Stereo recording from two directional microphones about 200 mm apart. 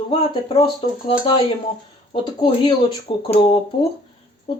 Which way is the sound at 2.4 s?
20° left (ahead or behind).